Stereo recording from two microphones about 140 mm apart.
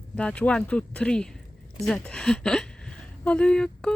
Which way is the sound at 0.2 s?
10° left (ahead or behind).